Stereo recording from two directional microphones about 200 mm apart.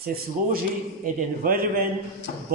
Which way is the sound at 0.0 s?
50° right (ahead or behind).